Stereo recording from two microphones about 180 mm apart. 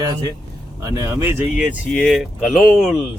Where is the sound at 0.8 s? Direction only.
15° right (ahead or behind).